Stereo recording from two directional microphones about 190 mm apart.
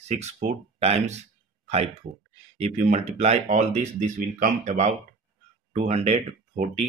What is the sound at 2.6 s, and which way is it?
Speech, 35° right (ahead or behind).